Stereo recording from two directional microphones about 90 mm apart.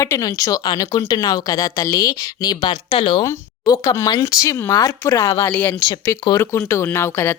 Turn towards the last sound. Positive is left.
turn(degrees=30)  # may be behind; listen again after turning